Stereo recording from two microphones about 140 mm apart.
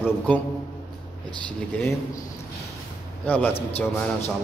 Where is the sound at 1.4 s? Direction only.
10° left (ahead or behind).